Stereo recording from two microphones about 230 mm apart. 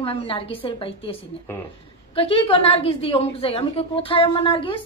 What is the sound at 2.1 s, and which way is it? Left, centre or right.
A woman's voice, left.